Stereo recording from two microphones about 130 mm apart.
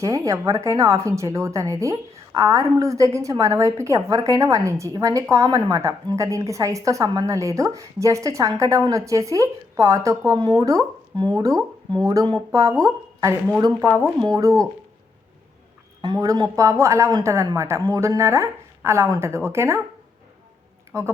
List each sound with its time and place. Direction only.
0.0 s speech: 25° right (ahead or behind)
13.8 s speech: 15° right (ahead or behind)
14.2 s speech: 30° right (ahead or behind)
16.0 s speech: 30° right (ahead or behind)